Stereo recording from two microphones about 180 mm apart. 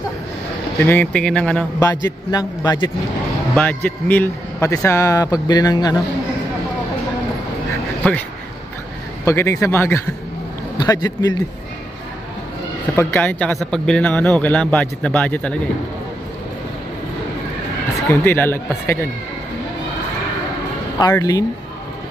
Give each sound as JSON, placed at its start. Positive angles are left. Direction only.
{"t": 0.7, "sound": "speech", "side_deg": 15}
{"t": 1.8, "sound": "a man's voice", "side_deg": 20}
{"t": 3.5, "sound": "speech", "side_deg": 10}
{"t": 9.2, "sound": "a man's voice", "side_deg": 15}
{"t": 12.9, "sound": "speech", "side_deg": 10}
{"t": 18.2, "sound": "speech", "side_deg": 10}
{"t": 21.1, "sound": "a man's voice", "side_deg": 20}